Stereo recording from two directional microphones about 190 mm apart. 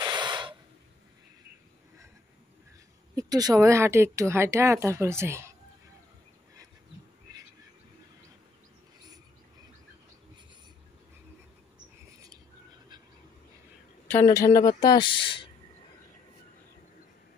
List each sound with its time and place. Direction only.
0.0 s a sound: 25° right (ahead or behind)
3.2 s speech: 20° right (ahead or behind)
14.0 s speech: 15° left (ahead or behind)